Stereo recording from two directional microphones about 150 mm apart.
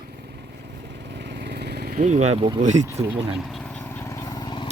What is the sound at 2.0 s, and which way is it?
Speech, 50° right (ahead or behind).